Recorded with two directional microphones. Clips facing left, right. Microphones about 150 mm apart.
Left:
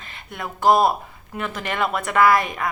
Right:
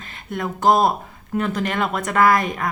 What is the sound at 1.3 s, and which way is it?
Speech, 40° right (ahead or behind).